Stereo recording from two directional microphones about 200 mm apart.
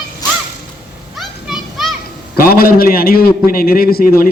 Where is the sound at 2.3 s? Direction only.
50° left (ahead or behind).